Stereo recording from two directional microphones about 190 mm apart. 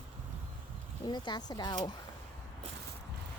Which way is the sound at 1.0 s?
25° left (ahead or behind).